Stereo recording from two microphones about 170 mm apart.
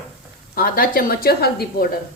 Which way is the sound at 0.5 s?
60° left (ahead or behind).